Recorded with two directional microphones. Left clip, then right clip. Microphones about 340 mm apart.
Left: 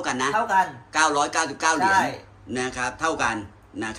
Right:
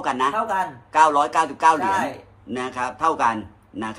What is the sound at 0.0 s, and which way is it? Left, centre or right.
A man's voice, centre.